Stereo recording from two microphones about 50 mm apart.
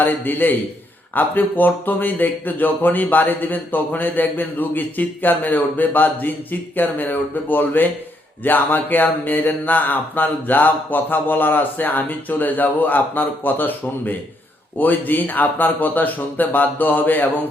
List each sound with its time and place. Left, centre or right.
0.0 s speech: left